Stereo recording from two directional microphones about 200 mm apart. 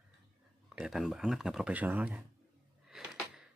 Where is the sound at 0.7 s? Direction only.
5° right (ahead or behind).